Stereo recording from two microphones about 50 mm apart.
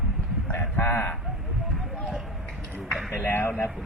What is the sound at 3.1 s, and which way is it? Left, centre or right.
Speech, left.